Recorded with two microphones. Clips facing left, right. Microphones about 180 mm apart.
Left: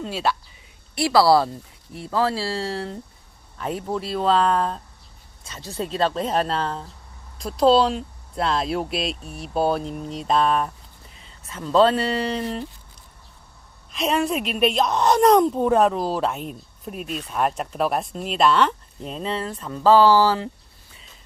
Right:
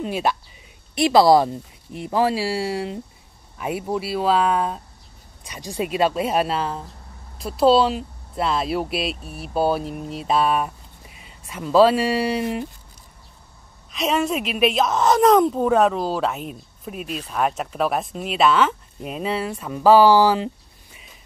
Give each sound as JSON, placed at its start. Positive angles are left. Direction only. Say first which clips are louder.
{"t": 0.0, "sound": "speech", "louder": "right 2 dB", "side_deg": -15}
{"t": 13.9, "sound": "speech", "louder": "right 1 dB", "side_deg": 0}